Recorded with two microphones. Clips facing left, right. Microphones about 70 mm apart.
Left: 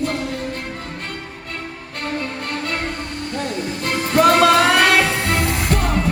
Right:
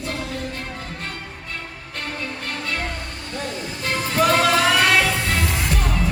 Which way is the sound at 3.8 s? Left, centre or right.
Left.